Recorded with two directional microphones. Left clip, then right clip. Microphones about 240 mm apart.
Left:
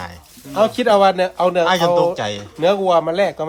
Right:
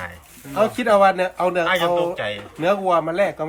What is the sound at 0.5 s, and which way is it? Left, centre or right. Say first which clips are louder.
Speech: left 3 dB; left.